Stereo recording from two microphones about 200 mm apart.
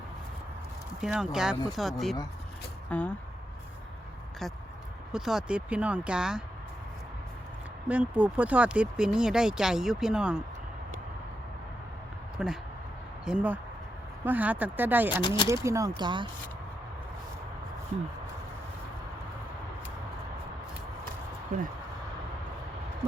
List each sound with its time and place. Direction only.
1.0 s speech: 5° right (ahead or behind)
5.1 s speech: 5° right (ahead or behind)
7.9 s speech: 5° right (ahead or behind)
12.4 s speech: 5° right (ahead or behind); by 16.3 s 25° right (ahead or behind)